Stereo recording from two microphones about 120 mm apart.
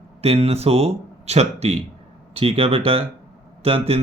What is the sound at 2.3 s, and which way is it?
Speech, 50° right (ahead or behind).